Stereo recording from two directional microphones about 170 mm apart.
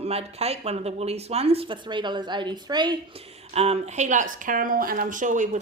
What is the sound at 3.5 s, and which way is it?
Speech, 40° right (ahead or behind).